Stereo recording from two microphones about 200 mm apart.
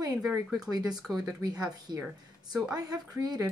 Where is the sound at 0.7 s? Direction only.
20° right (ahead or behind).